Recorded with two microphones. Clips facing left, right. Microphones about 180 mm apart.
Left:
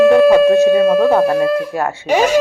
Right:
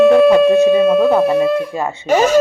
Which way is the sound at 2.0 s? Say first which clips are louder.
Right 1 dB; 10° left (ahead or behind).